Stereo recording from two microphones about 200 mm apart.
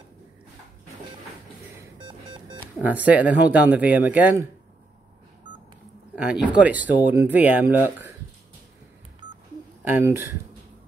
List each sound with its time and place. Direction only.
2.8 s speech: 10° right (ahead or behind)
5.5 s telephone dialing: 25° right (ahead or behind)
6.1 s speech: 5° right (ahead or behind)
9.8 s speech: 10° right (ahead or behind)